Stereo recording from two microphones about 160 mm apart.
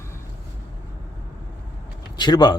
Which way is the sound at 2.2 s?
25° left (ahead or behind).